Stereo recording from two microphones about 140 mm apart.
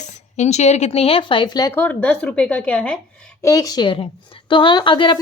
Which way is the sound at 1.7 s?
10° left (ahead or behind).